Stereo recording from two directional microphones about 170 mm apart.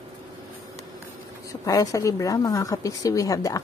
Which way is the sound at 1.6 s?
20° left (ahead or behind).